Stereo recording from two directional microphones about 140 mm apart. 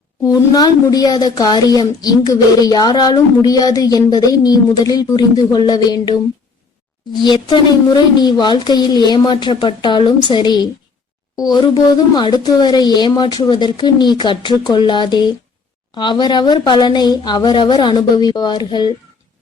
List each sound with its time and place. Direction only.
0.3 s a woman's voice: 25° left (ahead or behind)